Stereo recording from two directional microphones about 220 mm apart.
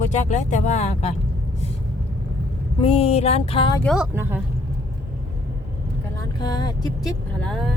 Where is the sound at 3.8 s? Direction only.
Centre (ahead or behind).